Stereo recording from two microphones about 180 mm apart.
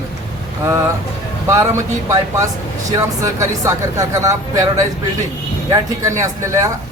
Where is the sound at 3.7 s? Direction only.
15° right (ahead or behind).